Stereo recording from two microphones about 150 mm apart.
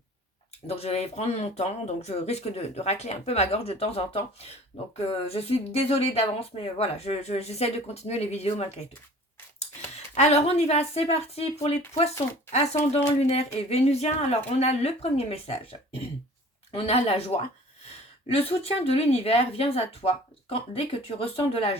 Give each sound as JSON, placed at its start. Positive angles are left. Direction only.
{"t": 0.7, "sound": "speech", "side_deg": 45}
{"t": 10.2, "sound": "speech", "side_deg": 45}
{"t": 16.7, "sound": "speech", "side_deg": 40}